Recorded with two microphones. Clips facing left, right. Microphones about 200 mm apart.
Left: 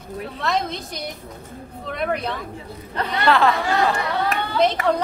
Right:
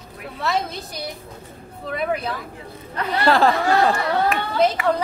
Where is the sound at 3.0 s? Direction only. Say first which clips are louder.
Even; 35° left (ahead or behind).